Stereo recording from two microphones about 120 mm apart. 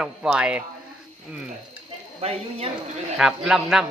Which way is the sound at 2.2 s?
55° right (ahead or behind).